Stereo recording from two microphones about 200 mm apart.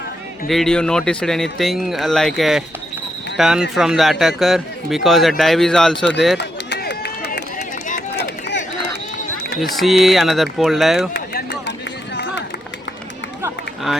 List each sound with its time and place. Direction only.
0.4 s speech: centre (ahead or behind)
6.3 s run: 55° left (ahead or behind)
9.7 s speech: centre (ahead or behind)
11.1 s run: 55° left (ahead or behind)